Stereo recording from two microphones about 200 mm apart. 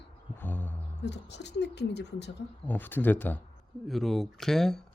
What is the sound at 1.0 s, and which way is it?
Speech, 60° left (ahead or behind).